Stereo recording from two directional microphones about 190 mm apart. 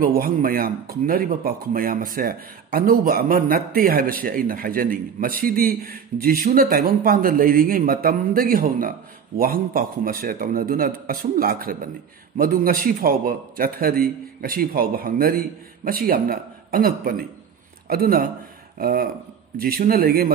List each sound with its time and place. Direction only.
0.0 s speech: 50° right (ahead or behind)